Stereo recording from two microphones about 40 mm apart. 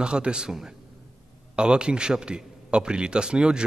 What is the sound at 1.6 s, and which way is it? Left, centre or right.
Speech, right.